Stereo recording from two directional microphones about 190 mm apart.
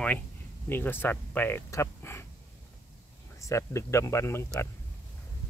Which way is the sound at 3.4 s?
15° left (ahead or behind).